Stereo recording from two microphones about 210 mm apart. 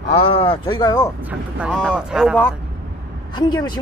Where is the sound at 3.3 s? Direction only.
20° left (ahead or behind).